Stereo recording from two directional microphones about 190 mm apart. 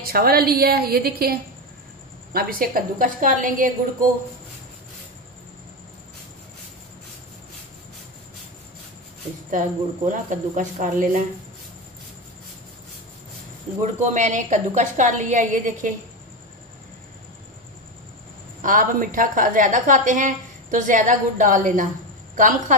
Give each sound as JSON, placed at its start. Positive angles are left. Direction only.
{"t": 0.0, "sound": "a woman's voice", "side_deg": -50}
{"t": 9.5, "sound": "a woman's voice", "side_deg": -45}
{"t": 13.7, "sound": "a woman's voice", "side_deg": -40}
{"t": 18.6, "sound": "a woman's voice", "side_deg": -45}